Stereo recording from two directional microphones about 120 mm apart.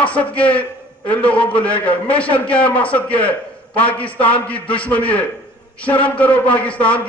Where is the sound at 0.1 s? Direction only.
10° left (ahead or behind).